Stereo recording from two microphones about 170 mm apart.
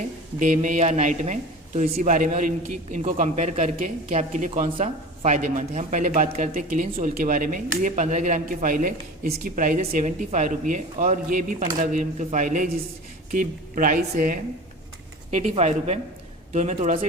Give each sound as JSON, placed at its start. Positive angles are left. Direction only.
{"t": 0.3, "sound": "speech", "side_deg": -50}
{"t": 15.3, "sound": "speech", "side_deg": -40}